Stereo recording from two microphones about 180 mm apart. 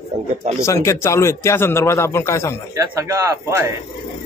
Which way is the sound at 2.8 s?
15° right (ahead or behind).